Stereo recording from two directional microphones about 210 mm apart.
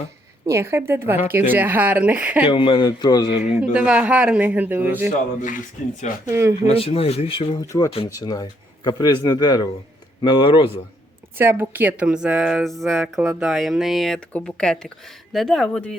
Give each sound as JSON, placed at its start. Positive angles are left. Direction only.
{"t": 0.4, "sound": "a man's voice", "side_deg": -10}
{"t": 2.5, "sound": "speech", "side_deg": 25}
{"t": 3.6, "sound": "a man's voice", "side_deg": -5}
{"t": 5.4, "sound": "speech", "side_deg": 40}
{"t": 6.2, "sound": "a man's voice", "side_deg": -15}
{"t": 6.7, "sound": "speech", "side_deg": 25}
{"t": 11.3, "sound": "speech", "side_deg": -10}